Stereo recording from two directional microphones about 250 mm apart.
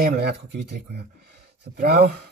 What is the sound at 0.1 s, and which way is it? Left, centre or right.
Speech, right.